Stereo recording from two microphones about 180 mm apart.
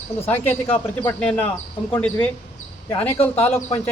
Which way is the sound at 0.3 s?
10° left (ahead or behind).